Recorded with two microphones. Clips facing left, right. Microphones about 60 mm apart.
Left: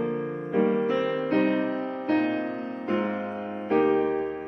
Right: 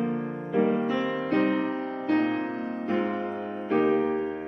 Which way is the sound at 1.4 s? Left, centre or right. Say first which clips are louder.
Even; right.